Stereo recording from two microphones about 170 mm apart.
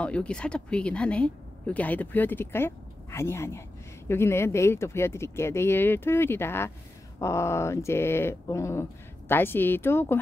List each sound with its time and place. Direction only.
0.0 s speech: 5° left (ahead or behind)